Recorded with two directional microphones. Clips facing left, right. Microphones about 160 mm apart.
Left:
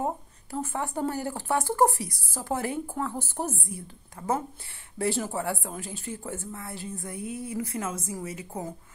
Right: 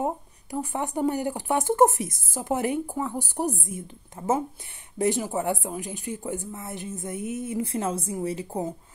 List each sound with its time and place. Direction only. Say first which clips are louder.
0.0 s speech: right 2 dB; 15° right (ahead or behind)